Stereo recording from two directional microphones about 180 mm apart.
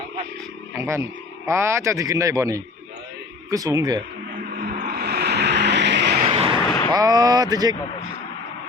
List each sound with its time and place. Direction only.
0.7 s music: 15° right (ahead or behind)
1.5 s speech: 15° right (ahead or behind)
4.5 s vehicle: 55° right (ahead or behind)
6.2 s vehicle: 30° right (ahead or behind)
6.9 s speech: 20° right (ahead or behind)